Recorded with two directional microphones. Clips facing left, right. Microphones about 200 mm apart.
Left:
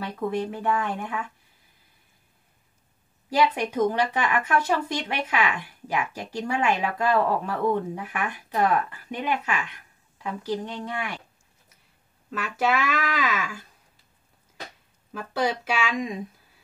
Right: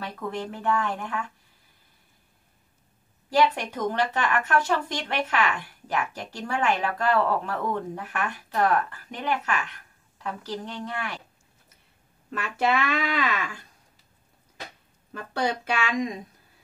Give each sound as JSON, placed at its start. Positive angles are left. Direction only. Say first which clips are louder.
{"t": 0.0, "sound": "speech", "louder": "left 5 dB", "side_deg": 10}
{"t": 3.3, "sound": "speech", "louder": "left 1 dB", "side_deg": 10}
{"t": 12.3, "sound": "speech", "louder": "even", "side_deg": 0}
{"t": 15.1, "sound": "speech", "louder": "left 1 dB", "side_deg": 5}